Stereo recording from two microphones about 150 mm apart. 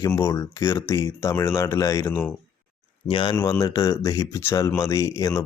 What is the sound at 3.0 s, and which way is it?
Speech, 35° left (ahead or behind).